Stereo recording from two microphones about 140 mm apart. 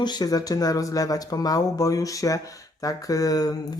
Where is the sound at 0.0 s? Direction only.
30° left (ahead or behind).